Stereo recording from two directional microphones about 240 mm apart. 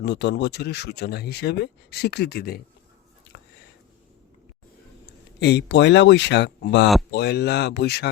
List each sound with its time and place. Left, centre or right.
0.0 s speech: left
5.4 s speech: left